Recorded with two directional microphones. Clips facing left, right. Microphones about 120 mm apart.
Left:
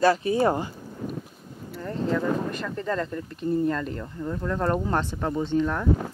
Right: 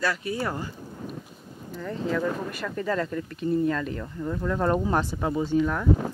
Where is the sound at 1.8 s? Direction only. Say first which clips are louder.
Left 1 dB; 5° left (ahead or behind).